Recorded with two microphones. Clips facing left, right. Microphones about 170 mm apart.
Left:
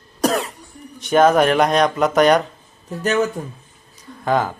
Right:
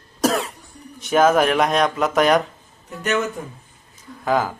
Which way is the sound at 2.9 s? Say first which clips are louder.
Left 3 dB; 35° left (ahead or behind).